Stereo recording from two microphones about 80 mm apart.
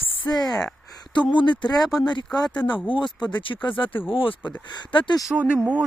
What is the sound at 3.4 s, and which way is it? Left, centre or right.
Speech, left.